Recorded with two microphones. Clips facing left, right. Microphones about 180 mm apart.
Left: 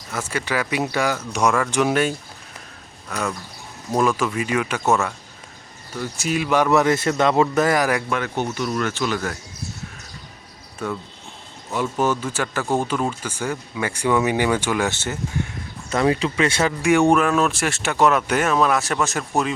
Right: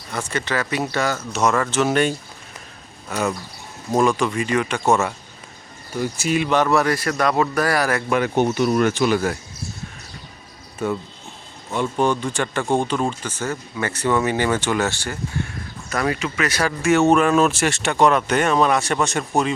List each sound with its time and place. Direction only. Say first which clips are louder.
0.1 s speech: even; 5° left (ahead or behind)
3.1 s speech: right 3 dB; 5° right (ahead or behind)
4.2 s speech: right 2 dB; 5° left (ahead or behind)
6.1 s speech: even; centre (ahead or behind)
6.7 s speech: left 2 dB; 20° left (ahead or behind)
8.1 s speech: right 5 dB; 15° right (ahead or behind)
11.7 s speech: right 1 dB; 5° left (ahead or behind)
14.9 s speech: left 1 dB; 20° left (ahead or behind)
17.2 s speech: right 3 dB; centre (ahead or behind)